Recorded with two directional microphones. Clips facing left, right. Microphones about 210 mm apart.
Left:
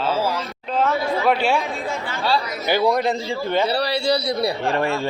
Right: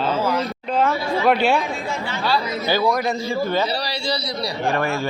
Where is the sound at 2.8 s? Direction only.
30° left (ahead or behind).